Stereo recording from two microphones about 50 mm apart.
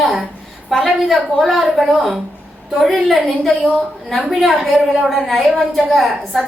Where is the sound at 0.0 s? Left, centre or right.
Centre.